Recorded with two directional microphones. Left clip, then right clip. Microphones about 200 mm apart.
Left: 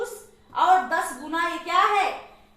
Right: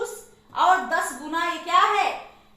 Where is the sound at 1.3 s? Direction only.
10° right (ahead or behind).